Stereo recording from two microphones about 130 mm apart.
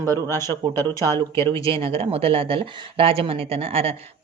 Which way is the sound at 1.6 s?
45° right (ahead or behind).